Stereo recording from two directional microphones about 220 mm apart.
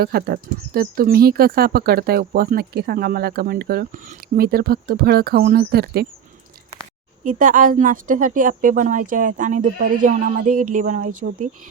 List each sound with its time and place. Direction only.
0.0 s speech: 45° right (ahead or behind)
7.3 s a woman's voice: 35° right (ahead or behind)